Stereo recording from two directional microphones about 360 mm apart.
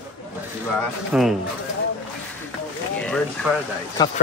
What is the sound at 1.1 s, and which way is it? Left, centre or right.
Speech, centre.